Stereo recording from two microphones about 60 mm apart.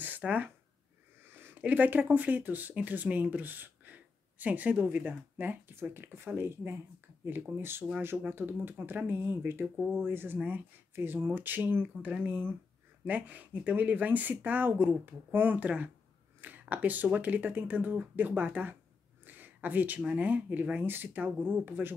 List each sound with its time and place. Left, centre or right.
0.2 s speech: right
1.2 s a sound: right
1.6 s speech: right